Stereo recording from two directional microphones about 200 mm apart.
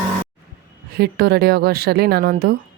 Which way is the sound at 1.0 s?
50° right (ahead or behind).